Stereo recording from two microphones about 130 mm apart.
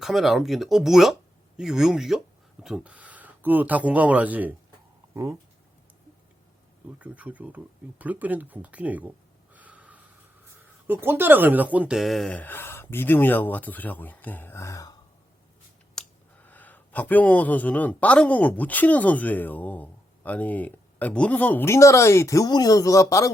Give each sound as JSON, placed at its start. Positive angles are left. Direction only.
{"t": 0.0, "sound": "speech", "side_deg": 0}
{"t": 7.0, "sound": "speech", "side_deg": -10}
{"t": 12.3, "sound": "speech", "side_deg": 15}
{"t": 16.0, "sound": "a sound", "side_deg": 5}
{"t": 16.4, "sound": "speech", "side_deg": 15}